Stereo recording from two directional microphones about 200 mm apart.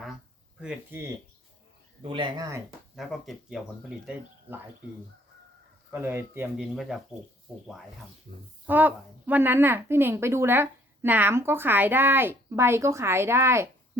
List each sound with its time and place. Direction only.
0.6 s a woman's voice: 10° right (ahead or behind)
2.0 s speech: 25° right (ahead or behind)
2.9 s speech: centre (ahead or behind)
5.9 s a woman's voice: 10° right (ahead or behind)
8.6 s a woman's voice: 10° right (ahead or behind)